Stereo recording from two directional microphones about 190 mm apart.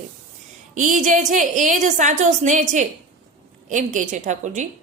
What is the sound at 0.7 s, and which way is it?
A woman's voice, 40° right (ahead or behind).